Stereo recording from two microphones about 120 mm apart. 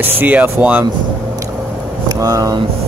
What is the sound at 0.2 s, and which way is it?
Speech, 15° right (ahead or behind).